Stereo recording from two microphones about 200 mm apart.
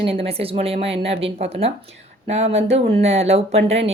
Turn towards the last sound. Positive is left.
turn(degrees=-30)  # may be behind; listen again after turning